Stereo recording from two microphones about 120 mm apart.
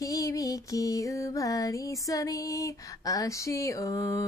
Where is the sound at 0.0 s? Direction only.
30° left (ahead or behind).